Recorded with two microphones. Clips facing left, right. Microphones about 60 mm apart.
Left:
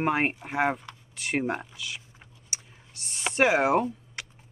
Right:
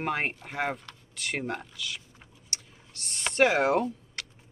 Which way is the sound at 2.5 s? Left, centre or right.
Centre.